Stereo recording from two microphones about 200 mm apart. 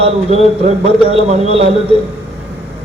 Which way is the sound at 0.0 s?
30° right (ahead or behind).